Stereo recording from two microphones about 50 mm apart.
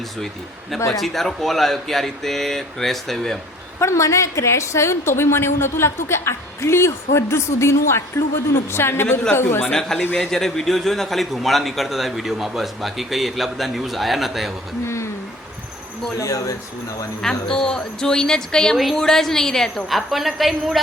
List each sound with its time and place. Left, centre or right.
0.9 s a man's voice: centre
3.8 s a woman's voice: left
10.2 s a man's voice: centre
16.1 s speech: left
17.2 s speech: centre
19.9 s a man's voice: centre